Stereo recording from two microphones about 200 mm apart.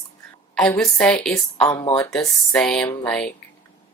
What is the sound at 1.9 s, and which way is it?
Speech, 5° left (ahead or behind).